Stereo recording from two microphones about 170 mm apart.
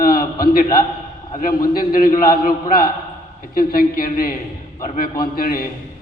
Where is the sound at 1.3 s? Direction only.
55° left (ahead or behind).